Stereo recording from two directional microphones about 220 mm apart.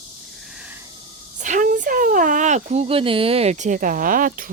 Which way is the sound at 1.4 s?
35° right (ahead or behind).